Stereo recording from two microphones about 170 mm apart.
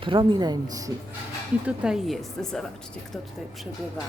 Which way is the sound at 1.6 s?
5° right (ahead or behind).